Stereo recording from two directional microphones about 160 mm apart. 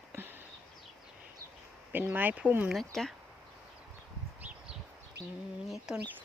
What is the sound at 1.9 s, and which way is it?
Speech, 10° right (ahead or behind).